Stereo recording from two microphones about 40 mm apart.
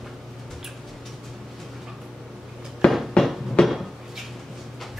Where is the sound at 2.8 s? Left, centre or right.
Left.